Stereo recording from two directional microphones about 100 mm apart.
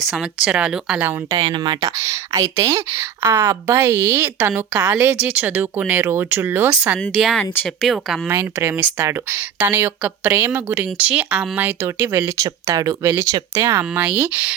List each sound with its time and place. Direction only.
0.0 s speech: 5° right (ahead or behind)
1.3 s speech: 45° right (ahead or behind)
2.0 s speech: 30° right (ahead or behind); by 7.0 s 10° right (ahead or behind)
7.3 s speech: 15° left (ahead or behind)
7.9 s speech: centre (ahead or behind)
8.3 s speech: 20° right (ahead or behind)